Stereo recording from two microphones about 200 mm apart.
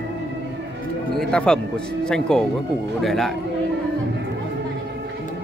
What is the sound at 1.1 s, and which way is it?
Speech, 5° left (ahead or behind).